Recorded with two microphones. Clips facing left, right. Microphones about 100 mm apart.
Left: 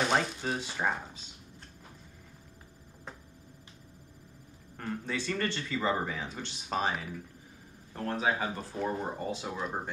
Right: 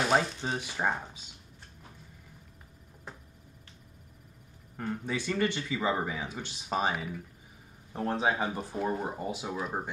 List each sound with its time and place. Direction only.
0.0 s shuffling cards: 5° right (ahead or behind)
0.4 s speech: 15° right (ahead or behind)
4.7 s speech: 10° right (ahead or behind)
8.7 s speech: 5° right (ahead or behind)